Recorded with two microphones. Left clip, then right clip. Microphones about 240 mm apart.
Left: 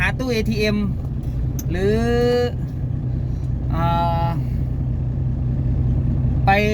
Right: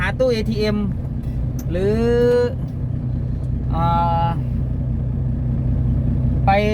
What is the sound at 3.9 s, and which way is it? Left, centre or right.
Vehicle, left.